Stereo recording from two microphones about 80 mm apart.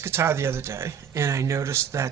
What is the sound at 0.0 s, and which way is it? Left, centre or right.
Speech, right.